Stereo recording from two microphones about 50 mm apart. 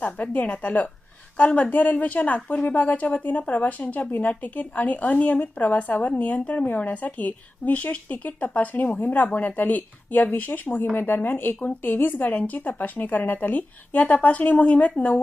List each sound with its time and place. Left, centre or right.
0.0 s speech: left